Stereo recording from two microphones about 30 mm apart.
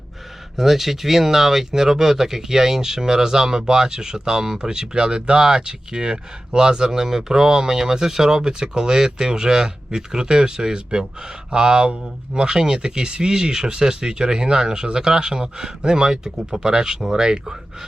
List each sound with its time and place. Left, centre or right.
0.5 s speech: centre